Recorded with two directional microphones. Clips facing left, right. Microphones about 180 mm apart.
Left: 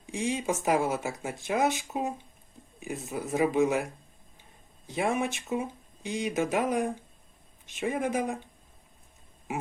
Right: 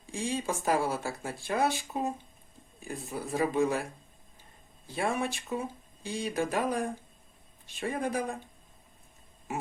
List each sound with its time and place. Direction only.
0.0 s speech: 20° left (ahead or behind)
4.9 s speech: 20° left (ahead or behind)